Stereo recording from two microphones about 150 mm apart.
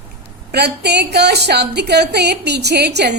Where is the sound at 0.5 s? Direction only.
90° right.